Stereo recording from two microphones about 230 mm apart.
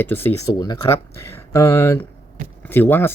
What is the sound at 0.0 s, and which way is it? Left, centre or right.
Speech, centre.